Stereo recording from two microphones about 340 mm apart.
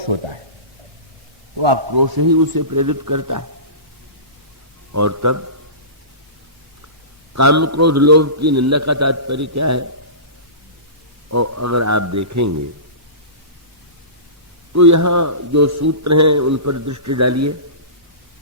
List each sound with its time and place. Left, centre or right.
1.9 s speech: right
4.9 s a man's voice: right
7.3 s a man's voice: right
11.3 s a man's voice: right
14.7 s a man's voice: right